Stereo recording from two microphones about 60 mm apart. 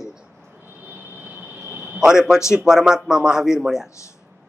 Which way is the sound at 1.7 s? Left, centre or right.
Right.